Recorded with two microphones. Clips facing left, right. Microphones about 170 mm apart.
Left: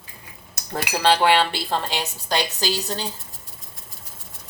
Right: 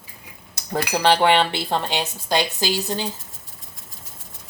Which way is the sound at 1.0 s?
20° right (ahead or behind).